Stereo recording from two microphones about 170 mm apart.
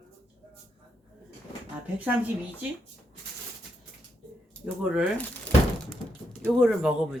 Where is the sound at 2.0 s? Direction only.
10° right (ahead or behind).